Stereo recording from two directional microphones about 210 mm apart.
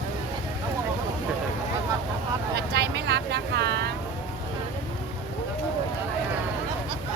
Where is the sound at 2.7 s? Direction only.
55° right (ahead or behind).